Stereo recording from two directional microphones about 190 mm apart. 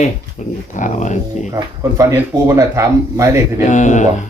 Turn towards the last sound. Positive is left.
turn(degrees=40)  # may be behind; listen again after turning